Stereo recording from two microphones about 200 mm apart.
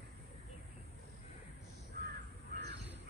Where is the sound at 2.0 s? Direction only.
50° right (ahead or behind).